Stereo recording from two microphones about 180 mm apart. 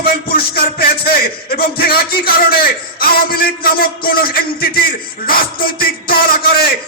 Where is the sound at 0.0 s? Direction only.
60° left (ahead or behind).